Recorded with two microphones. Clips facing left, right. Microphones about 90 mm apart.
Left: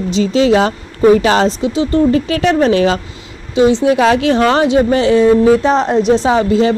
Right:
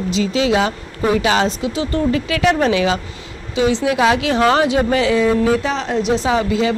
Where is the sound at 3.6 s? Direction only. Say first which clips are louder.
Left 5 dB; 30° left (ahead or behind).